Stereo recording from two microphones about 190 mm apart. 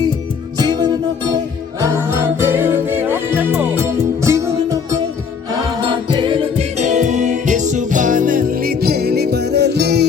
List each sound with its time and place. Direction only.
0.6 s music: 20° right (ahead or behind)
5.5 s music: 25° right (ahead or behind); by 10.1 s 60° right (ahead or behind)